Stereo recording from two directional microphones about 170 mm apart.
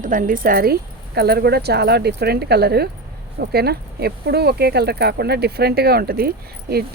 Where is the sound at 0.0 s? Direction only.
50° right (ahead or behind).